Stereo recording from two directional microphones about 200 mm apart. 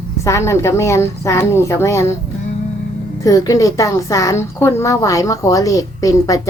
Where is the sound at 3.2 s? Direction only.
15° left (ahead or behind).